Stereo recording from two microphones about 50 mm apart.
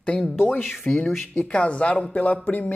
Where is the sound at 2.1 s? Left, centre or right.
Left.